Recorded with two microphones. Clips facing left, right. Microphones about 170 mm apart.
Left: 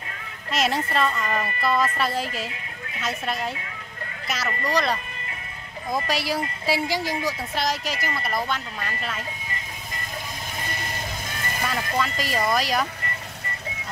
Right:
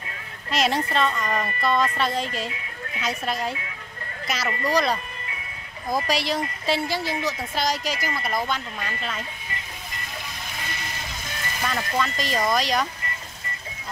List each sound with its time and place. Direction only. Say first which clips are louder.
0.5 s a woman's voice: right 1 dB; centre (ahead or behind)
7.5 s a woman's voice: right 1 dB; centre (ahead or behind)
11.6 s a woman's voice: right 1 dB; 5° left (ahead or behind)